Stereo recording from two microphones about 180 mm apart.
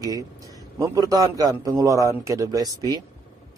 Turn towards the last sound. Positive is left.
turn(degrees=-20)  # may be behind; listen again after turning